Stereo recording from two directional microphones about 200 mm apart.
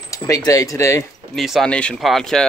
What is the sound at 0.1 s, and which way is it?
Speech, 15° left (ahead or behind).